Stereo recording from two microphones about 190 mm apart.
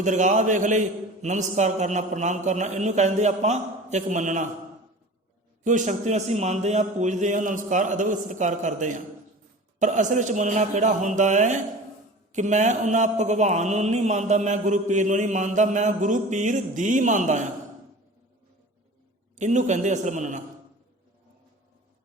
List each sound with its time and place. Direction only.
0.0 s a man's voice: 40° right (ahead or behind)
5.6 s a man's voice: 40° right (ahead or behind)
19.4 s a man's voice: 40° right (ahead or behind)